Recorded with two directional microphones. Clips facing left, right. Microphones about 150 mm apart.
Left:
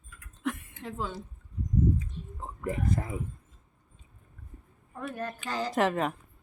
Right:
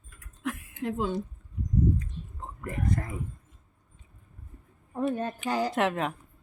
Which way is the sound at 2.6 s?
5° left (ahead or behind).